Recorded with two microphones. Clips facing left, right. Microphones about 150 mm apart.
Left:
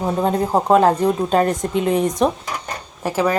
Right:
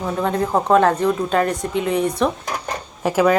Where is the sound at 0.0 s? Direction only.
25° left (ahead or behind).